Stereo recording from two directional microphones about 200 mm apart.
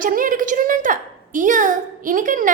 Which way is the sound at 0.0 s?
45° right (ahead or behind).